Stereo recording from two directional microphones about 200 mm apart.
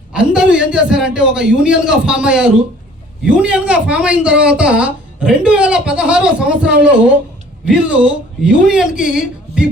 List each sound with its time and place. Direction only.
0.1 s speech: 5° right (ahead or behind)